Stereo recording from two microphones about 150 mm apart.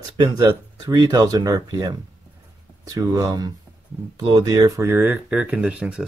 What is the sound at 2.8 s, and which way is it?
Speech, 25° right (ahead or behind).